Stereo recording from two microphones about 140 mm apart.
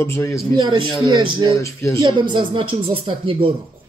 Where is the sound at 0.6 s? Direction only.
30° right (ahead or behind).